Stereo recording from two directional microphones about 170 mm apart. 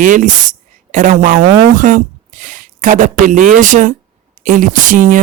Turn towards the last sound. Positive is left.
turn(degrees=-50)  # may be behind; listen again after turning